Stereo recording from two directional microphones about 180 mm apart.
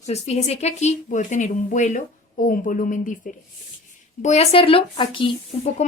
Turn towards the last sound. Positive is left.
turn(degrees=35)  # may be behind; listen again after turning